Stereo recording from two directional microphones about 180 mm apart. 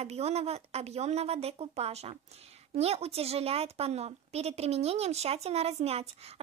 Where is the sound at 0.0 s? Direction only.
35° right (ahead or behind).